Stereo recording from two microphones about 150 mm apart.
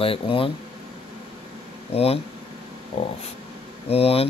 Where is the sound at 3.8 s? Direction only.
40° left (ahead or behind).